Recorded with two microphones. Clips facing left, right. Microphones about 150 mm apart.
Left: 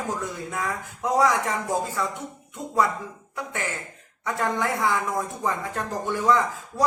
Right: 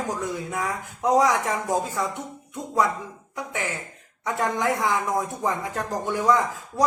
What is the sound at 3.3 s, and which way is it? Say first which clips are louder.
Speech: right 1 dB; 15° right (ahead or behind).